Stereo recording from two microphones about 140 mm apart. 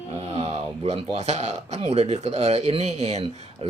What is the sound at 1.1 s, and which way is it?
Speech, 50° right (ahead or behind).